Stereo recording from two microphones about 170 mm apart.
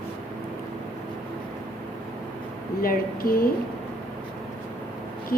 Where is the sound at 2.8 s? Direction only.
60° left (ahead or behind).